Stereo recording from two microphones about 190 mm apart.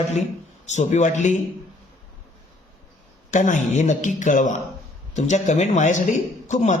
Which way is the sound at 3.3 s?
40° left (ahead or behind).